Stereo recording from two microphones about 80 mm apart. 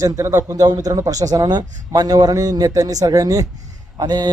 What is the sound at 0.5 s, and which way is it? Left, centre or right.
Speech, right.